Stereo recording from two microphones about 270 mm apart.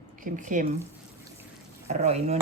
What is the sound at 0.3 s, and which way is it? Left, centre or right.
Speech, right.